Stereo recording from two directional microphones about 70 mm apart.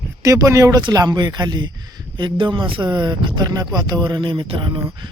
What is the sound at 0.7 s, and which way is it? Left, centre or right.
A man's voice, right.